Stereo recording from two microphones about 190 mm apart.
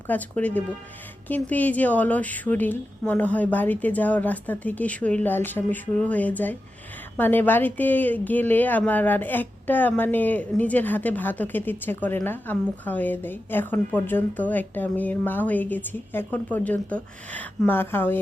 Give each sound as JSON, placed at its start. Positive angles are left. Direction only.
{"t": 0.1, "sound": "speech", "side_deg": 10}